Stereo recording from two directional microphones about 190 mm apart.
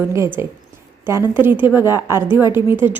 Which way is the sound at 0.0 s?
15° right (ahead or behind).